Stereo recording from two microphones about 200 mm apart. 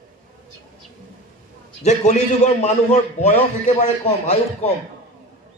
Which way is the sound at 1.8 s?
35° left (ahead or behind).